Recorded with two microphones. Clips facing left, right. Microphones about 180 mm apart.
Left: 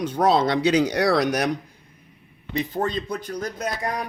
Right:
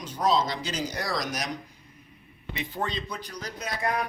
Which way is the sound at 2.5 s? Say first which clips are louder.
Left 7 dB; 40° left (ahead or behind).